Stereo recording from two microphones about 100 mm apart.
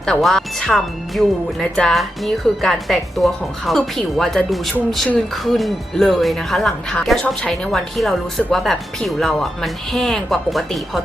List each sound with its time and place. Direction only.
0.0 s speech: 5° left (ahead or behind)